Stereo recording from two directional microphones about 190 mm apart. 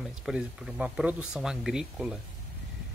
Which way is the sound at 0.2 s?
5° right (ahead or behind).